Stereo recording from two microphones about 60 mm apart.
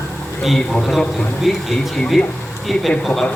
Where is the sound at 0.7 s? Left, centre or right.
Centre.